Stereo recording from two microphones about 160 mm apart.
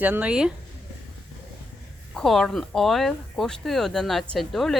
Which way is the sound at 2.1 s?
Centre (ahead or behind).